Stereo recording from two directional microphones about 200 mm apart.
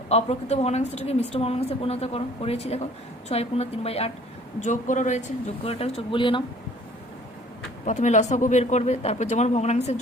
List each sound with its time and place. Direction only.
0.1 s a woman's voice: 30° left (ahead or behind)
7.9 s a woman's voice: 35° left (ahead or behind)